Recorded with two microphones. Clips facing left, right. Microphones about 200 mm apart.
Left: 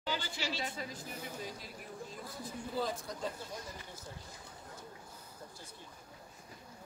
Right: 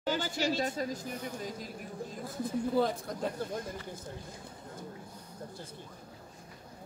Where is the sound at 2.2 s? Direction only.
55° right (ahead or behind).